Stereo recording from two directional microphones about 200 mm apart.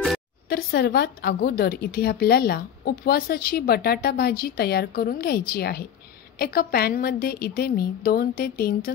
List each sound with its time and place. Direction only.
0.5 s a woman's voice: 50° left (ahead or behind)